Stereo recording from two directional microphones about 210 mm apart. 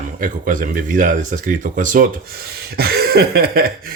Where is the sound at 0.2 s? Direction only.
40° right (ahead or behind).